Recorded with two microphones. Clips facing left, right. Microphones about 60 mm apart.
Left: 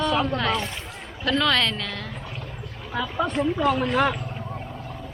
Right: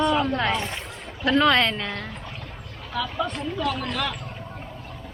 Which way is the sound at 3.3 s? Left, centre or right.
Centre.